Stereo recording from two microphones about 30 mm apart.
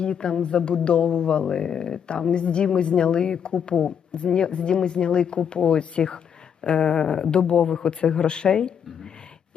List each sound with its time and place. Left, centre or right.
0.0 s speech: left
6.7 s a sound: left
7.1 s speech: left